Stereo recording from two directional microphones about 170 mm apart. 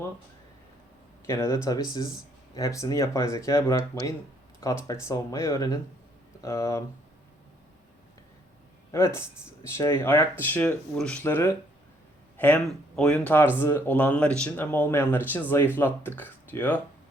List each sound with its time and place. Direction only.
1.3 s speech: 15° left (ahead or behind)
8.9 s speech: 15° left (ahead or behind)